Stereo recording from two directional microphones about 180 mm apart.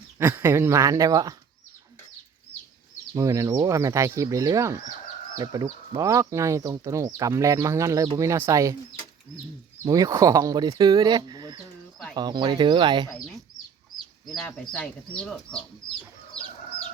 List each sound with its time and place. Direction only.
0.2 s speech: 15° right (ahead or behind)
3.2 s speech: 15° right (ahead or behind)
9.8 s speech: 20° right (ahead or behind)
13.1 s speech: centre (ahead or behind)